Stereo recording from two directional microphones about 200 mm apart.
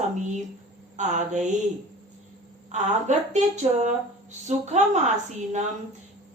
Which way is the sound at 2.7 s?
35° right (ahead or behind).